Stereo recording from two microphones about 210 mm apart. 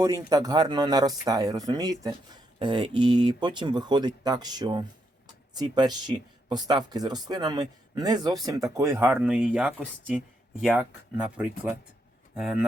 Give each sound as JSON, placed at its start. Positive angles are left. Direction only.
{"t": 0.0, "sound": "speech", "side_deg": -15}